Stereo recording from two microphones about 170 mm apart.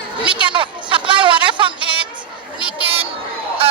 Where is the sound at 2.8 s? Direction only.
35° right (ahead or behind).